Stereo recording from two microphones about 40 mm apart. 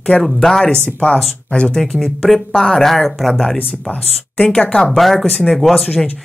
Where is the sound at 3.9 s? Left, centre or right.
Left.